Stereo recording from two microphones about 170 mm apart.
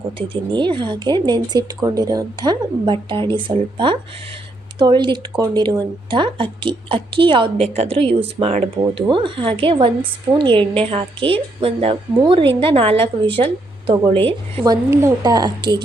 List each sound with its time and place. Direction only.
0.2 s a woman's voice: 30° right (ahead or behind)
14.6 s a woman's voice: 20° right (ahead or behind)